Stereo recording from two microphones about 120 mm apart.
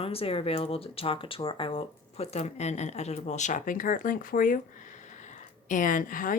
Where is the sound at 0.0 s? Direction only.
55° left (ahead or behind); by 3.8 s 85° left.